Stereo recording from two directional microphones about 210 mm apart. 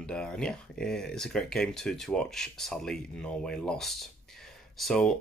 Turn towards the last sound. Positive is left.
turn(degrees=0)  # may be behind; listen again after turning